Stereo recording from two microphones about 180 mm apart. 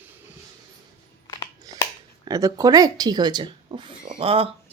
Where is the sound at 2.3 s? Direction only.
20° right (ahead or behind).